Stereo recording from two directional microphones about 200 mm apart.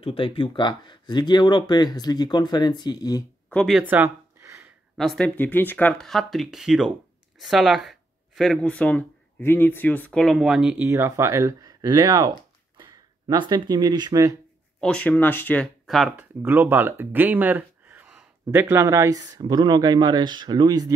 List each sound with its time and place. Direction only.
0.0 s speech: 25° left (ahead or behind)
3.4 s speech: centre (ahead or behind)
3.9 s a sound: 10° right (ahead or behind)
4.9 s speech: centre (ahead or behind); by 14.3 s 20° right (ahead or behind)
14.8 s speech: 5° left (ahead or behind); by 20.9 s 20° right (ahead or behind)